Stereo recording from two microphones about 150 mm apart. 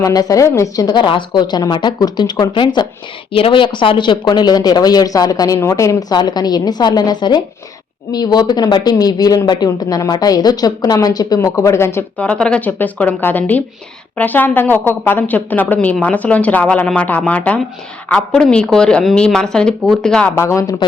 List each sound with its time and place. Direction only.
0.0 s a woman's voice: 25° left (ahead or behind); by 20.3 s 5° left (ahead or behind)
20.3 s speech: 20° left (ahead or behind)